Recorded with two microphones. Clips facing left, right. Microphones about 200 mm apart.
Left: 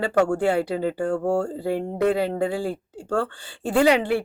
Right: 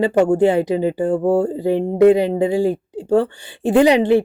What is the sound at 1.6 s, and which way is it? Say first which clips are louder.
Speech: right 9 dB; 15° right (ahead or behind).